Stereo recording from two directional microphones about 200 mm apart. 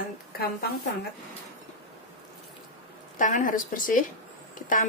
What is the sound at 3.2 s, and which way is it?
Speech, 40° left (ahead or behind).